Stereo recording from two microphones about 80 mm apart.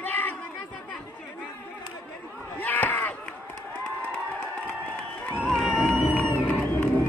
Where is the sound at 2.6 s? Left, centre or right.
Left.